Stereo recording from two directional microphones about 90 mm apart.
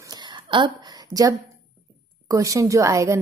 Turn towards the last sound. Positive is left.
turn(degrees=-35)  # may be behind; listen again after turning